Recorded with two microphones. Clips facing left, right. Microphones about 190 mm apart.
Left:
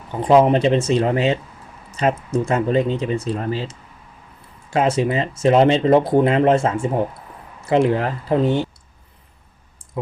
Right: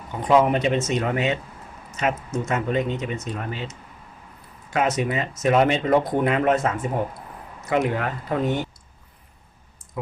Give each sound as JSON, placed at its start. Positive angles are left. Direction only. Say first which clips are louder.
{"t": 0.2, "sound": "speech", "louder": "left 5 dB", "side_deg": 30}